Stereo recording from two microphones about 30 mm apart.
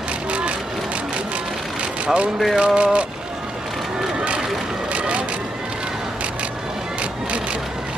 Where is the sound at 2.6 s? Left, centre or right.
Right.